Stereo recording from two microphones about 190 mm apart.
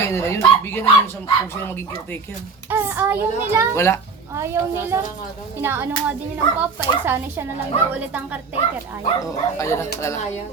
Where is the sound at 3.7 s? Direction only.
15° left (ahead or behind).